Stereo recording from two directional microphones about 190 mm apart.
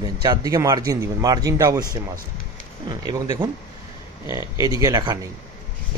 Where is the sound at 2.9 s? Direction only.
20° right (ahead or behind).